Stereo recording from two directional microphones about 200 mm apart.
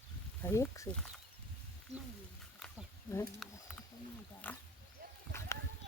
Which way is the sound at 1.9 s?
35° right (ahead or behind).